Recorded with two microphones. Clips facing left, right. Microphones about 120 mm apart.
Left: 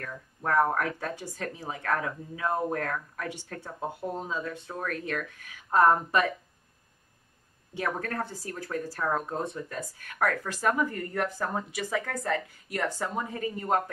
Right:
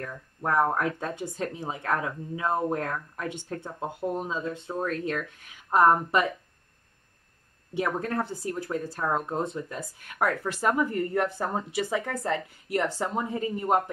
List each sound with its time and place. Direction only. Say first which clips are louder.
0.0 s speech: right 2 dB; 20° right (ahead or behind)
7.7 s speech: right 4 dB; 20° right (ahead or behind)